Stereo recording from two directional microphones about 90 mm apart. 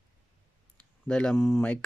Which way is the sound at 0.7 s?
10° left (ahead or behind).